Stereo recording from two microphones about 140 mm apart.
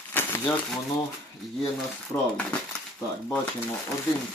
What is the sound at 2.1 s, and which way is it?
Speech, 20° left (ahead or behind).